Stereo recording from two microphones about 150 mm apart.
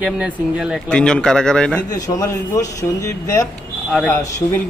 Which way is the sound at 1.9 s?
20° left (ahead or behind).